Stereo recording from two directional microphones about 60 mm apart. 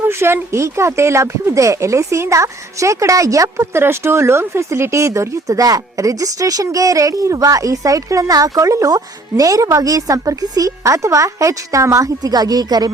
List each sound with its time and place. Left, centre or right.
0.0 s a woman's voice: right